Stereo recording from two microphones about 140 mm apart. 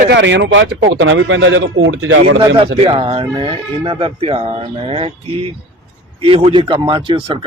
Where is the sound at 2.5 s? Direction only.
40° right (ahead or behind).